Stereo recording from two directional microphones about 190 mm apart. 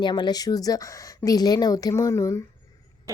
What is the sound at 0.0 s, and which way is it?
A woman's voice, 25° left (ahead or behind).